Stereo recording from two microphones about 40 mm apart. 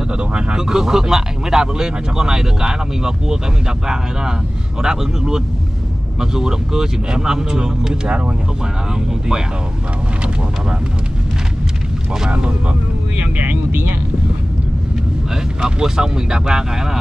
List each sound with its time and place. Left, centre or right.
0.2 s speech: right
0.7 s speech: centre
12.1 s speech: centre
13.7 s speech: right
15.6 s speech: centre